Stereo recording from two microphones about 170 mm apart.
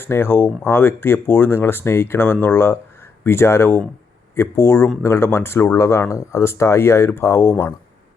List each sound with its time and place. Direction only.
0.0 s speech: 15° left (ahead or behind)